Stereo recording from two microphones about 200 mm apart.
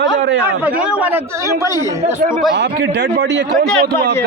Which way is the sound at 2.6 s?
60° right (ahead or behind).